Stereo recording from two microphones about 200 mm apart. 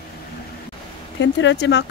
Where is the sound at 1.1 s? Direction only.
65° left (ahead or behind).